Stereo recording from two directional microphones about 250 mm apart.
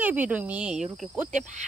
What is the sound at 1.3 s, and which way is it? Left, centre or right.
Cricket, right.